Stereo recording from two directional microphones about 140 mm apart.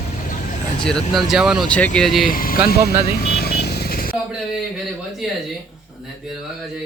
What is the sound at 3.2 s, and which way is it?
Vehicle, 90° left.